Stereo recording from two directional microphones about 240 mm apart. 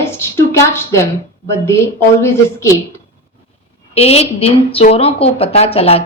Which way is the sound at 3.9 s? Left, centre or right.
Left.